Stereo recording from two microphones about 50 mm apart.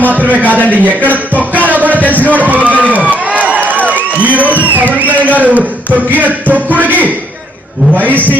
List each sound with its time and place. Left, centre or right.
0.0 s a man's voice: right
1.7 s a sound: right
2.2 s a man's voice: right
2.6 s crowd: right
4.2 s a man's voice: right